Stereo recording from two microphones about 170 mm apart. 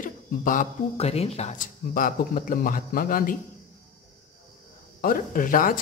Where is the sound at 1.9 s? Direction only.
55° left (ahead or behind).